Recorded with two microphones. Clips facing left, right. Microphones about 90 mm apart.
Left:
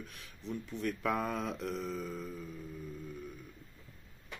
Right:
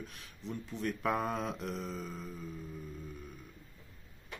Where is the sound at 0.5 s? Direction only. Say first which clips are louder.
Left 1 dB; 35° right (ahead or behind).